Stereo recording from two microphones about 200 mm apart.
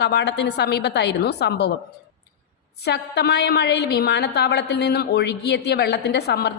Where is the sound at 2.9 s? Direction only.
55° left (ahead or behind).